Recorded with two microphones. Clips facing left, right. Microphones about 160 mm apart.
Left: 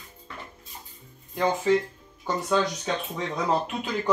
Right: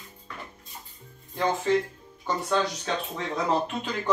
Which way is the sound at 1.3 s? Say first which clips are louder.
Left 2 dB; 10° left (ahead or behind).